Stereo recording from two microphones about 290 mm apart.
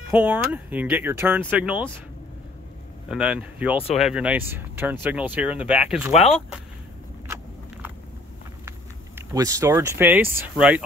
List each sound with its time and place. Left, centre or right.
0.1 s speech: centre
3.1 s speech: centre
9.3 s speech: centre